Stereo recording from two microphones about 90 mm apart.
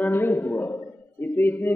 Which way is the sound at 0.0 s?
25° left (ahead or behind).